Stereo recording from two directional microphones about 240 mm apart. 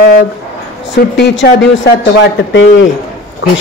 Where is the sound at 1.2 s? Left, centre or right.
Left.